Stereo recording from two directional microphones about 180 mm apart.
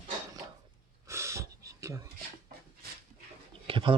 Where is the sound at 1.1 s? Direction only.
15° right (ahead or behind).